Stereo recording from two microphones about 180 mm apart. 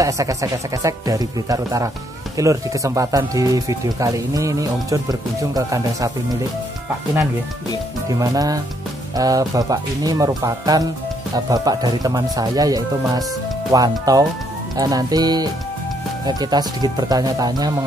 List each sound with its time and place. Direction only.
0.0 s speech: 20° right (ahead or behind)
8.1 s speech: 20° right (ahead or behind)